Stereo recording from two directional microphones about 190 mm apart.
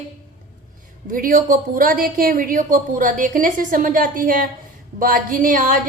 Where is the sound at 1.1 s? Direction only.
45° right (ahead or behind).